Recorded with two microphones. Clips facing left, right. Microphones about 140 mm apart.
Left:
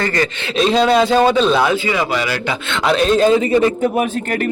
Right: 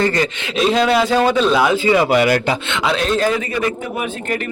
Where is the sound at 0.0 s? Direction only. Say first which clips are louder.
Right 1 dB; 15° right (ahead or behind).